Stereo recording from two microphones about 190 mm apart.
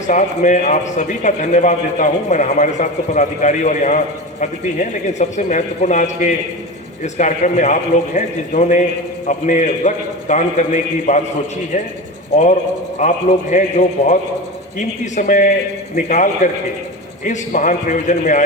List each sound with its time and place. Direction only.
0.1 s a man's voice: 40° left (ahead or behind)
13.0 s a man's voice: 40° left (ahead or behind)